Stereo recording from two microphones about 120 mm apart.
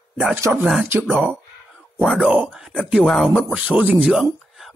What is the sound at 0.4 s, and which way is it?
Speech, 20° right (ahead or behind).